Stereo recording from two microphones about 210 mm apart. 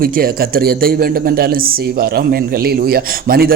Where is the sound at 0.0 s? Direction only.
45° right (ahead or behind).